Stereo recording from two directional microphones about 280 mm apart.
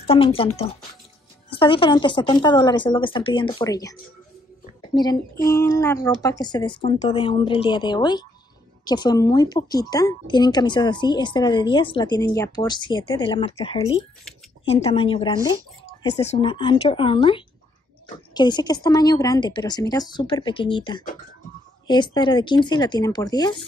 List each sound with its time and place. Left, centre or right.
0.0 s a woman's voice: centre
4.9 s a woman's voice: centre